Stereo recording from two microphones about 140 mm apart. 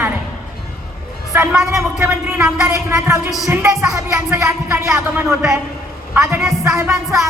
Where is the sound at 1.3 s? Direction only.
15° right (ahead or behind).